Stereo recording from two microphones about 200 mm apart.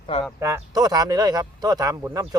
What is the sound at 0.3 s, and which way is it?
Speech, 15° right (ahead or behind).